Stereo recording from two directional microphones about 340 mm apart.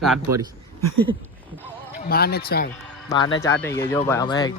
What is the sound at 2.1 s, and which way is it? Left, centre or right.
Speech, left.